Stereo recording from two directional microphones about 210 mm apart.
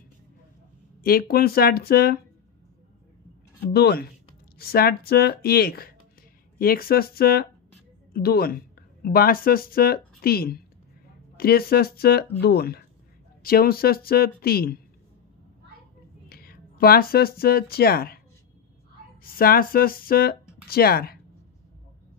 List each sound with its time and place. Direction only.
1.0 s speech: 45° left (ahead or behind)
3.7 s speech: 50° left (ahead or behind)
16.3 s speech: 45° left (ahead or behind)
19.2 s speech: 45° left (ahead or behind)